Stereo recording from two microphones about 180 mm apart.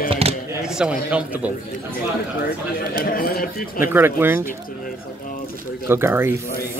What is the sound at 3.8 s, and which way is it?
Speech, 10° right (ahead or behind).